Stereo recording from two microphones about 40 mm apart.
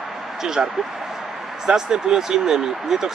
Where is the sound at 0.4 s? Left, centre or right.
Centre.